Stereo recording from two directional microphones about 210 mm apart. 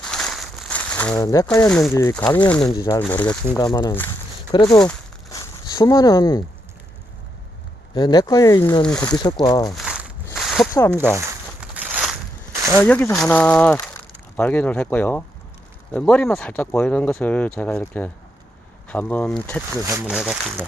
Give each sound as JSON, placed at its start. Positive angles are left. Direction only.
{"t": 0.0, "sound": "a sound", "side_deg": 0}
{"t": 1.2, "sound": "speech", "side_deg": 15}
{"t": 3.0, "sound": "speech", "side_deg": 5}
{"t": 3.6, "sound": "speech", "side_deg": 15}
{"t": 4.7, "sound": "a sound", "side_deg": 5}
{"t": 7.9, "sound": "speech", "side_deg": 20}
{"t": 8.8, "sound": "speech", "side_deg": 5}
{"t": 9.1, "sound": "speech", "side_deg": 20}
{"t": 9.7, "sound": "crumpling", "side_deg": -5}
{"t": 10.3, "sound": "a sound", "side_deg": 0}
{"t": 10.7, "sound": "speech", "side_deg": 15}
{"t": 10.9, "sound": "a sound", "side_deg": -10}
{"t": 12.8, "sound": "speech", "side_deg": 10}
{"t": 19.8, "sound": "speech", "side_deg": -15}